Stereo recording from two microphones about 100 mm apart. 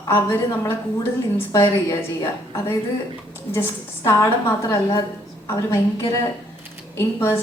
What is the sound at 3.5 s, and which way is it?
A woman's voice, 25° left (ahead or behind).